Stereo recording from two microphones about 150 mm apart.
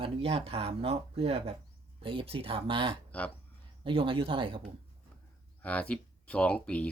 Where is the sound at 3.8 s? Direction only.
35° right (ahead or behind).